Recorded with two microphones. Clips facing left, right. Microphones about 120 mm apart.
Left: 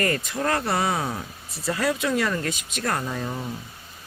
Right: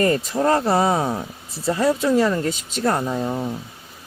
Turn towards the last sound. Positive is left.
turn(degrees=-30)  # may be behind; listen again after turning